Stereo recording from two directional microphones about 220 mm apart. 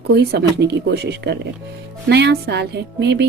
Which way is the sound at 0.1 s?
50° right (ahead or behind).